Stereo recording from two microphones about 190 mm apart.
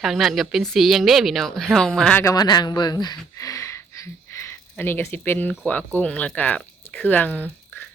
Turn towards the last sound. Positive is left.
turn(degrees=5)  # may be behind; listen again after turning